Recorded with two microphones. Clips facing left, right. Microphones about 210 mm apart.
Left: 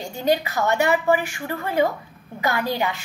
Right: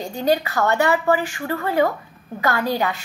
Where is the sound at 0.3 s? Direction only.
15° left (ahead or behind).